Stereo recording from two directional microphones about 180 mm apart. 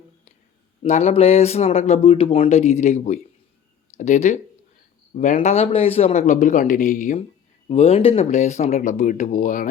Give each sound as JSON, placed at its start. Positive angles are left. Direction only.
{"t": 0.8, "sound": "speech", "side_deg": 40}